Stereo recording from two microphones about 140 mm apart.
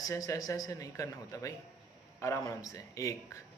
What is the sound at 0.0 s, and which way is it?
Speech, 25° left (ahead or behind).